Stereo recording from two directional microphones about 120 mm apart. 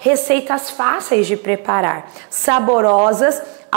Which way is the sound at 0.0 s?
20° right (ahead or behind).